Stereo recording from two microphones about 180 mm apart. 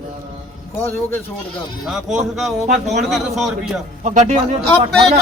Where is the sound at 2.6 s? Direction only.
40° right (ahead or behind).